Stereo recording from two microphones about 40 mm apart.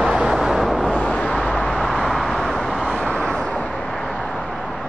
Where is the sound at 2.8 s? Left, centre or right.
Left.